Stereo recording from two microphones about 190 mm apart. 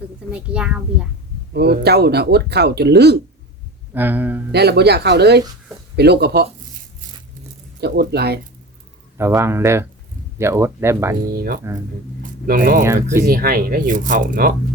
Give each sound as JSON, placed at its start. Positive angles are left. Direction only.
{"t": 0.3, "sound": "a child's voice", "side_deg": -5}
{"t": 1.5, "sound": "speech", "side_deg": -55}
{"t": 3.9, "sound": "speech", "side_deg": -10}
{"t": 4.5, "sound": "speech", "side_deg": -60}
{"t": 7.8, "sound": "speech", "side_deg": -60}
{"t": 9.1, "sound": "speech", "side_deg": -15}
{"t": 11.3, "sound": "speech", "side_deg": -50}
{"t": 12.8, "sound": "speech", "side_deg": -15}
{"t": 13.2, "sound": "speech", "side_deg": -50}